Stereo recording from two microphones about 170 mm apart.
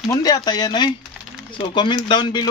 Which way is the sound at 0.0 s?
20° left (ahead or behind).